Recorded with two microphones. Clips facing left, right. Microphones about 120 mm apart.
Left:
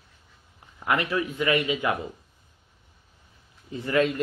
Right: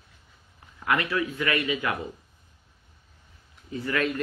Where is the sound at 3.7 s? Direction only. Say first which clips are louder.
Left 4 dB; 25° left (ahead or behind).